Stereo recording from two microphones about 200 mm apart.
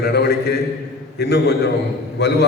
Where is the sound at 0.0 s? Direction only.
55° left (ahead or behind).